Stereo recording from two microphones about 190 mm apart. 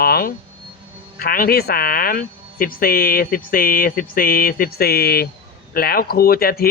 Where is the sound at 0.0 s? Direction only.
55° left (ahead or behind).